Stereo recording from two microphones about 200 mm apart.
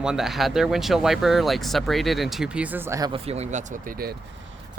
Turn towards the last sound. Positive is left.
turn(degrees=-45)  # may be behind; listen again after turning